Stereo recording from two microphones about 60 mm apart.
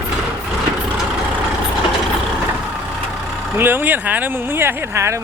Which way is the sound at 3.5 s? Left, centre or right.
Right.